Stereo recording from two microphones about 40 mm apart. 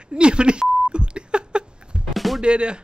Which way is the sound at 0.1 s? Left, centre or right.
Right.